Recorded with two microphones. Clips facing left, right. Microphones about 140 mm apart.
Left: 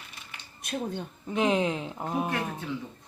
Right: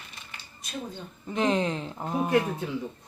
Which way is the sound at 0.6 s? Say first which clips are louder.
Left 5 dB; 60° left (ahead or behind).